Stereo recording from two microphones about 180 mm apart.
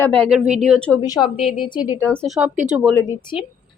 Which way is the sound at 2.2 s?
Centre (ahead or behind).